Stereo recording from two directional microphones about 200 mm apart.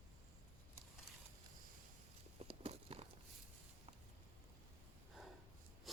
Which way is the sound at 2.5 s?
30° right (ahead or behind).